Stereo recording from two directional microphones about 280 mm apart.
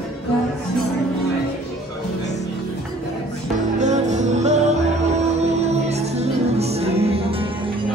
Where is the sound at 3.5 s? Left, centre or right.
Right.